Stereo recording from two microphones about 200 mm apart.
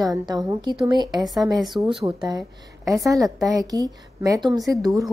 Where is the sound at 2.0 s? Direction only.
20° right (ahead or behind).